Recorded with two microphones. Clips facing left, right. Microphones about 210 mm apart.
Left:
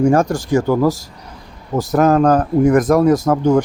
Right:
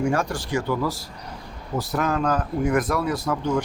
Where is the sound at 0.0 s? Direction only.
45° left (ahead or behind).